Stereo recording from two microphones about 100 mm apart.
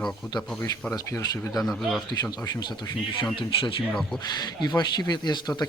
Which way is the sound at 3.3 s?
60° left (ahead or behind).